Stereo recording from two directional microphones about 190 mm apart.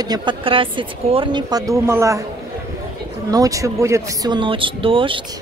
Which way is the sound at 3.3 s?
20° right (ahead or behind).